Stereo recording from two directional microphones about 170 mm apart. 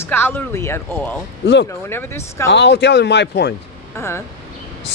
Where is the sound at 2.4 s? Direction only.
90° left.